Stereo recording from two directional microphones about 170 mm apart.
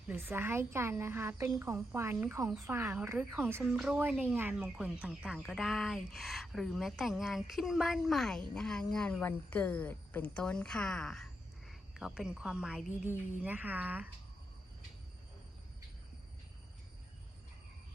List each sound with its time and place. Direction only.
0.1 s a woman's voice: 10° right (ahead or behind)